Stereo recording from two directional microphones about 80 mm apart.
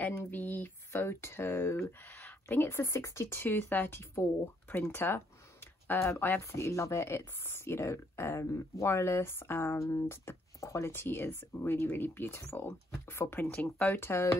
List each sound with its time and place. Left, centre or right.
0.0 s speech: left